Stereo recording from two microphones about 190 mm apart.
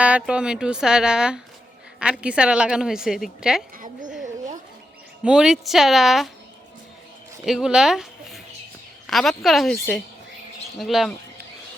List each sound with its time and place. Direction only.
0.0 s a woman's voice: 5° right (ahead or behind)
4.2 s a sound: 40° right (ahead or behind)
5.2 s a woman's voice: 5° right (ahead or behind)
7.4 s a woman's voice: 5° right (ahead or behind)
10.8 s a woman's voice: centre (ahead or behind)